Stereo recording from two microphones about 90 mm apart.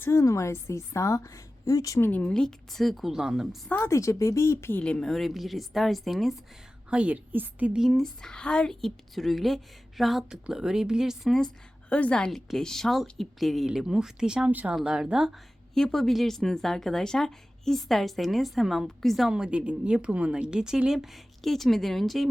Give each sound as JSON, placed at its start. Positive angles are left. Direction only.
{"t": 0.0, "sound": "a woman's voice", "side_deg": 35}
{"t": 2.0, "sound": "speech", "side_deg": 20}
{"t": 3.8, "sound": "a woman's voice", "side_deg": 35}
{"t": 4.8, "sound": "speech", "side_deg": 10}
{"t": 6.9, "sound": "speech", "side_deg": -15}
{"t": 7.8, "sound": "speech", "side_deg": 0}
{"t": 11.9, "sound": "a woman's voice", "side_deg": 15}